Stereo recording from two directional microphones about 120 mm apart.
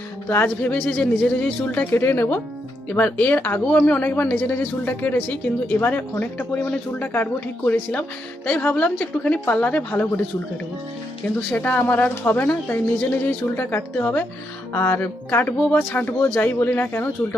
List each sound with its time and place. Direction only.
0.3 s speech: 20° left (ahead or behind)
11.5 s speech: 15° left (ahead or behind)